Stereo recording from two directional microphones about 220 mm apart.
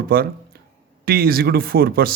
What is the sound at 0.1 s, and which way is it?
Speech, 45° right (ahead or behind).